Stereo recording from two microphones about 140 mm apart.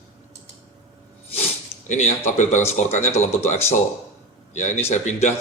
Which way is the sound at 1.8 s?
60° left (ahead or behind).